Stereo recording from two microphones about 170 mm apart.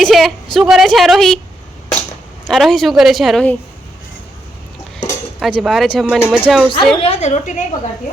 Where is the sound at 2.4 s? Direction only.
Centre (ahead or behind).